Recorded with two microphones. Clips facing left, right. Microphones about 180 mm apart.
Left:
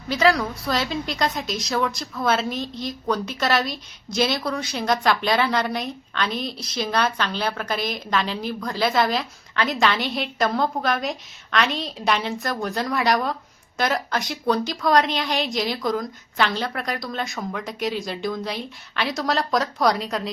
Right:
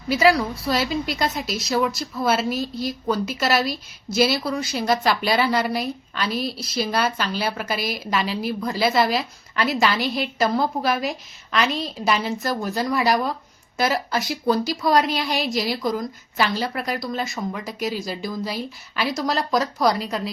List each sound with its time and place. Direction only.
0.1 s a woman's voice: 5° right (ahead or behind)